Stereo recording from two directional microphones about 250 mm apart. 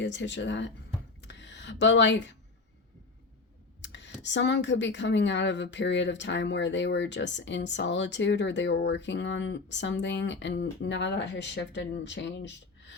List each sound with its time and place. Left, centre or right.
0.0 s speech: left
1.2 s a sound: left
3.8 s speech: left